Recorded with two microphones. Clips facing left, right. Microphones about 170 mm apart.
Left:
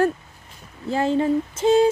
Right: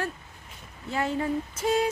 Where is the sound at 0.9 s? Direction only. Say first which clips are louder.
Left 8 dB; 30° left (ahead or behind).